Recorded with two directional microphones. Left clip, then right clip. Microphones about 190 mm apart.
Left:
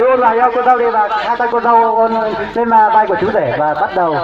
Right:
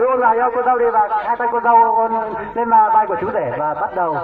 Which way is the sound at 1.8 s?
30° left (ahead or behind).